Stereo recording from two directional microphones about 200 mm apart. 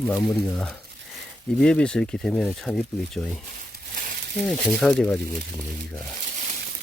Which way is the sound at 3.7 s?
45° right (ahead or behind).